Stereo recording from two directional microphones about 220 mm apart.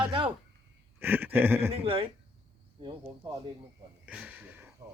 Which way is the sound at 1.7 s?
25° right (ahead or behind).